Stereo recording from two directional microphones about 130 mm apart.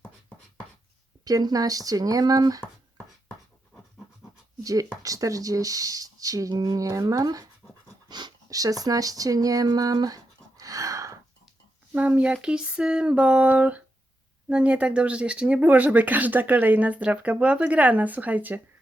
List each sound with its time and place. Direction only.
0.0 s writing: 5° left (ahead or behind)
1.2 s speech: 30° right (ahead or behind)
4.6 s speech: 25° right (ahead or behind)
8.0 s a sound: 30° right (ahead or behind)
11.9 s speech: 10° right (ahead or behind)